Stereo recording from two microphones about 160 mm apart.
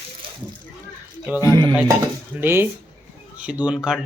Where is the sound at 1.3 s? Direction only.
10° right (ahead or behind).